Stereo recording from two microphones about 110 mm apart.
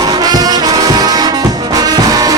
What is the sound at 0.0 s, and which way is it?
Brass instrument, 35° right (ahead or behind).